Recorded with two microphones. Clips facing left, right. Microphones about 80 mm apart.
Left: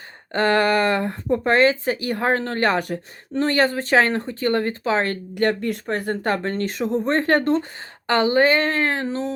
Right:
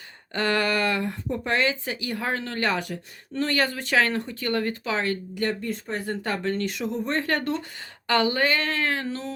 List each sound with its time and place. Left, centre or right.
0.3 s speech: left